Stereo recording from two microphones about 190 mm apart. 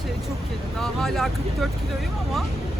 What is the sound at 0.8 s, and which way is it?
Vehicle, centre (ahead or behind).